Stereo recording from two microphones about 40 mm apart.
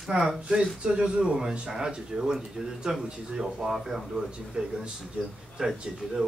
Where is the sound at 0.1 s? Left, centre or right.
Right; by 4.2 s centre.